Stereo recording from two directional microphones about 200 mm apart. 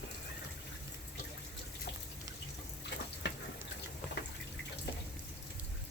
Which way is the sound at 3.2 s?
60° left (ahead or behind).